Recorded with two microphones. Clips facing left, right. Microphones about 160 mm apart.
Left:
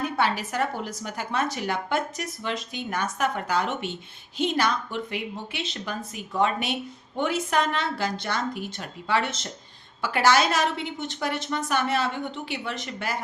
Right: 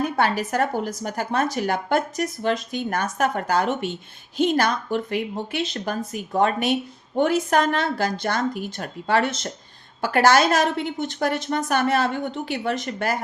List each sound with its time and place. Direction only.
0.2 s speech: 45° right (ahead or behind)